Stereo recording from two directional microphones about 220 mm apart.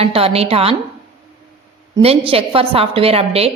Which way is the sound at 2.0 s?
25° right (ahead or behind).